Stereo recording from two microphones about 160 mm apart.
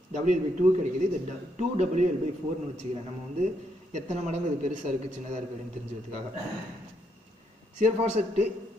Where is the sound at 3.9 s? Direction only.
50° right (ahead or behind).